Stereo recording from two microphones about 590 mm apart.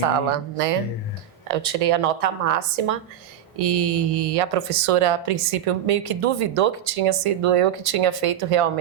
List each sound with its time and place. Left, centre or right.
0.0 s speech: right